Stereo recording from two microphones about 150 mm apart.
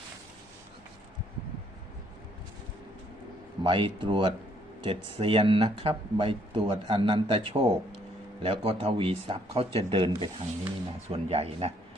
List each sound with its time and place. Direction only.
3.6 s speech: 30° right (ahead or behind)